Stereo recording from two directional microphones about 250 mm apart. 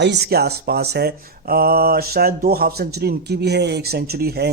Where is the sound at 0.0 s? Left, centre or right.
Right.